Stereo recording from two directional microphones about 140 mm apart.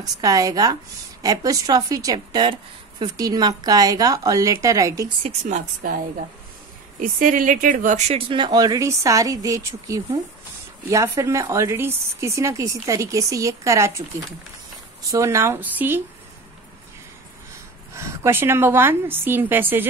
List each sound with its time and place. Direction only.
0.0 s speech: 25° right (ahead or behind)
5.2 s speech: 55° right (ahead or behind)
5.8 s a woman's voice: 80° right; by 8.2 s 55° right (ahead or behind)
8.3 s speech: 30° right (ahead or behind); by 16.0 s 15° right (ahead or behind)
17.9 s a woman's voice: 20° right (ahead or behind)